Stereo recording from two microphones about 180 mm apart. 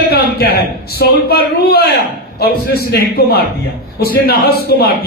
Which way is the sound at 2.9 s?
60° left (ahead or behind).